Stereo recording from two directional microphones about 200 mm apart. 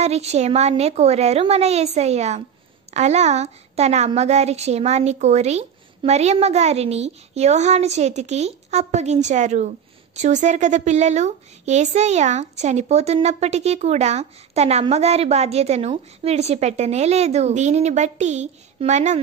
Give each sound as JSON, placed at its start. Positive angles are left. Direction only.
{"t": 0.0, "sound": "a woman's voice", "side_deg": -30}